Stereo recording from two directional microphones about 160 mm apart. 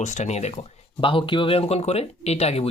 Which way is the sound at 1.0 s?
30° left (ahead or behind).